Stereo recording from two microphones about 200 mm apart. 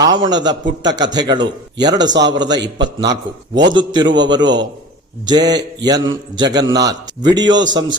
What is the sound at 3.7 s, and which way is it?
A man's voice, 20° right (ahead or behind).